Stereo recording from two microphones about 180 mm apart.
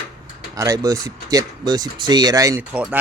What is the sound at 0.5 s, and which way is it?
Speech, 20° right (ahead or behind).